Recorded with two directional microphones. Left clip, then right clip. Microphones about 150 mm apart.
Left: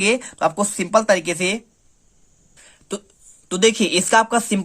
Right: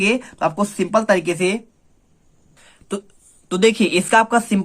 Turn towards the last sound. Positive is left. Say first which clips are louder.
# right 1 dB
turn(degrees=20)  # may be behind; listen again after turning